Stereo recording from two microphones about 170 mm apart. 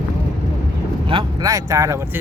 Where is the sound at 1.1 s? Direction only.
20° right (ahead or behind).